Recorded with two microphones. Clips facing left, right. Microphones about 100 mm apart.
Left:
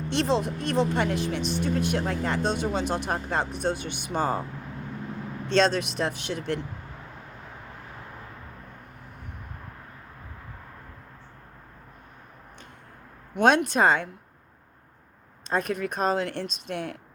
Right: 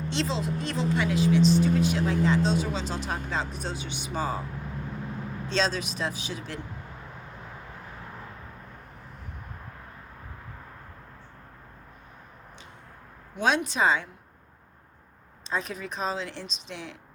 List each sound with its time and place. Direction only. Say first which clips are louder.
0.1 s speech: left 5 dB; 55° left (ahead or behind)
5.5 s speech: left 6 dB; 55° left (ahead or behind)
13.3 s speech: left 5 dB; 60° left (ahead or behind)
15.4 s speech: left 5 dB; 55° left (ahead or behind)